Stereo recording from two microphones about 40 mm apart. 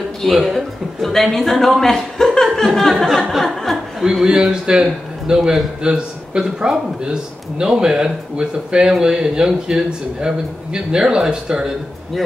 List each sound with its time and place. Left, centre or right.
0.2 s a man's voice: centre
2.5 s a sound: centre
4.0 s a man's voice: centre